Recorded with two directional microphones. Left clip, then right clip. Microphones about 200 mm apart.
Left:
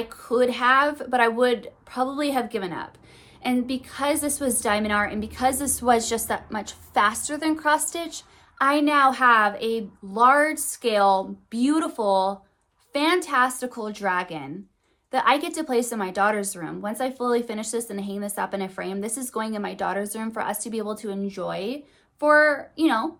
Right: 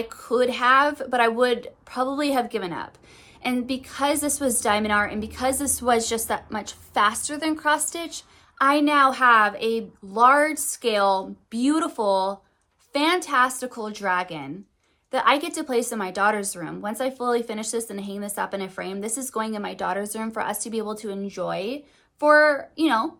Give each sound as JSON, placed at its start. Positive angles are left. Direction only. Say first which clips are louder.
{"t": 0.1, "sound": "a woman's voice", "louder": "left 1 dB", "side_deg": -15}